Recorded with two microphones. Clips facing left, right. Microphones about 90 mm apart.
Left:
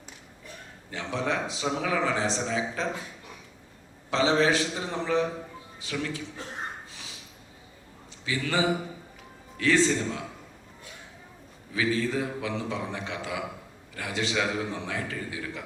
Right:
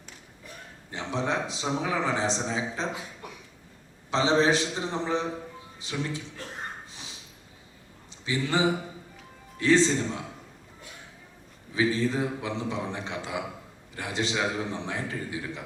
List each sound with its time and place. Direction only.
0.9 s a man's voice: 20° right (ahead or behind)
4.1 s a man's voice: 20° right (ahead or behind)
6.9 s a sound: 20° right (ahead or behind)
8.2 s a man's voice: 20° right (ahead or behind)
11.7 s a man's voice: 20° right (ahead or behind)